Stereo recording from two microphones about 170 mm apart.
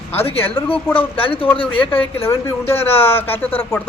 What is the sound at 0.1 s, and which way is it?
Speech, 35° left (ahead or behind).